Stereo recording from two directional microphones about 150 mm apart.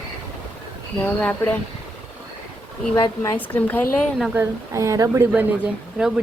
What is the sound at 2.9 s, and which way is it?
Speech, 25° left (ahead or behind).